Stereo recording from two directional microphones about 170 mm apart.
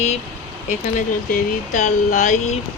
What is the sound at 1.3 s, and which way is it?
Speech, 50° left (ahead or behind).